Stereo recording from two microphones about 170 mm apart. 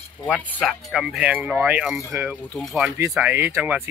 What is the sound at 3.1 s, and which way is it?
Speech, 10° right (ahead or behind).